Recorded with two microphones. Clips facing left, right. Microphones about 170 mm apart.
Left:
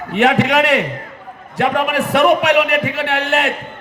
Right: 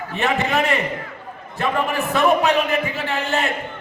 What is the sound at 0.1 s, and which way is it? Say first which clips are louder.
A man's voice: left 7 dB; 90° left.